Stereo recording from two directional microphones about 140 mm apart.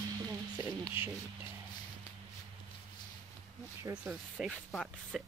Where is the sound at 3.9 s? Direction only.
5° right (ahead or behind).